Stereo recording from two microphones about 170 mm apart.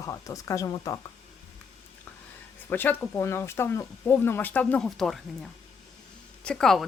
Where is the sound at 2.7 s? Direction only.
10° left (ahead or behind).